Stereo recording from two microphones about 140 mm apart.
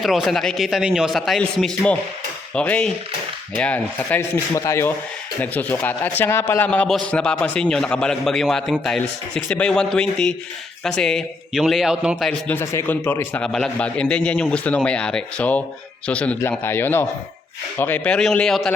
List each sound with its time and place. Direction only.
0.0 s a man's voice: centre (ahead or behind)
4.2 s a man's voice: 20° left (ahead or behind); by 12.3 s 5° right (ahead or behind)
12.3 s a man's voice: 15° left (ahead or behind)